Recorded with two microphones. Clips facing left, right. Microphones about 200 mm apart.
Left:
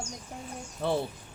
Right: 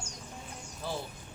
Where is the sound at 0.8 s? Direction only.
65° left (ahead or behind).